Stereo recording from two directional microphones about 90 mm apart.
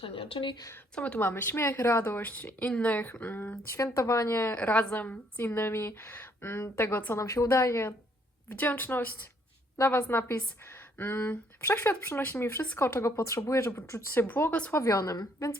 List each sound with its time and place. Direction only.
0.0 s speech: 90° left
0.9 s speech: 15° left (ahead or behind)
3.9 s a woman's voice: 35° left (ahead or behind)
4.5 s speech: 15° left (ahead or behind)
7.2 s a woman's voice: 35° left (ahead or behind)